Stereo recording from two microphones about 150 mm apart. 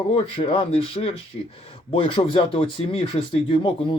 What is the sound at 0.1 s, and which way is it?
Speech, 40° left (ahead or behind).